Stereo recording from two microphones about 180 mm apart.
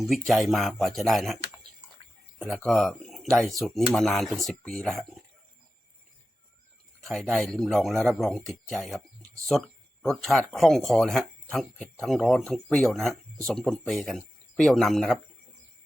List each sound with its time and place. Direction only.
0.1 s speech: centre (ahead or behind)
2.4 s speech: centre (ahead or behind)
7.0 s speech: centre (ahead or behind)